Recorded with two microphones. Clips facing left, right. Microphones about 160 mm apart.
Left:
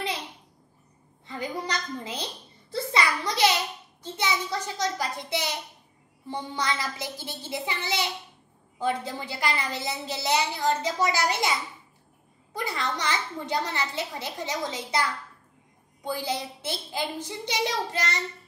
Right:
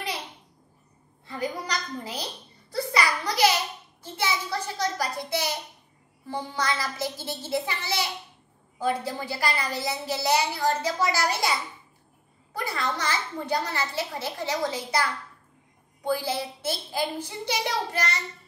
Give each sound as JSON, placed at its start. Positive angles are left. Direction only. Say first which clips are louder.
{"t": 1.2, "sound": "a sound", "louder": "right 1 dB", "side_deg": 20}
{"t": 4.0, "sound": "a woman's voice", "louder": "even", "side_deg": 20}
{"t": 12.5, "sound": "a woman's voice", "louder": "right 1 dB", "side_deg": 20}
{"t": 16.1, "sound": "a woman's voice", "louder": "right 3 dB", "side_deg": 20}